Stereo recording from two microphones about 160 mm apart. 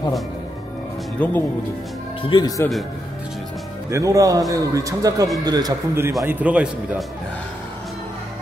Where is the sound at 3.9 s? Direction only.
20° right (ahead or behind).